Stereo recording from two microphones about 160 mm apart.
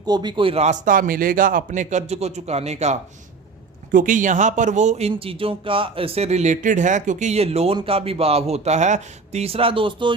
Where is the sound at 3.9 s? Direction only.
55° right (ahead or behind).